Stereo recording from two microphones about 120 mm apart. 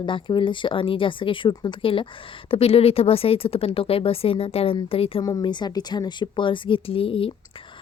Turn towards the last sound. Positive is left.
turn(degrees=50)  # may be behind; listen again after turning